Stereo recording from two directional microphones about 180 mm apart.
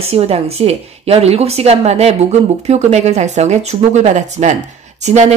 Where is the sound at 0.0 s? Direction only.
35° right (ahead or behind).